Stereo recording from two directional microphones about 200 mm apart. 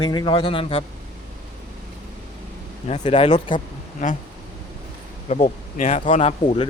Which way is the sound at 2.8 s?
30° left (ahead or behind).